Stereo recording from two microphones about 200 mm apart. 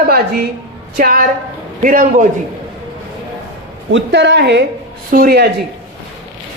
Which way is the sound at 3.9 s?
60° right (ahead or behind).